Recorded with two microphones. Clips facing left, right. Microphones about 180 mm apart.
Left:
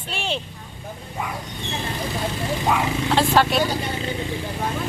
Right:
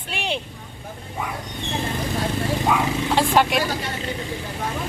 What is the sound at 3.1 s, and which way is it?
Speech, 15° right (ahead or behind).